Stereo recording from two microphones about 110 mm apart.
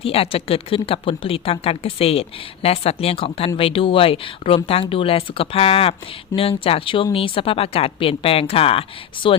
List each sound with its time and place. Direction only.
0.0 s speech: 60° left (ahead or behind)